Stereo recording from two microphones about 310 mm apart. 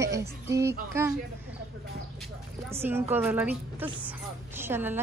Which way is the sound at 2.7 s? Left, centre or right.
Centre.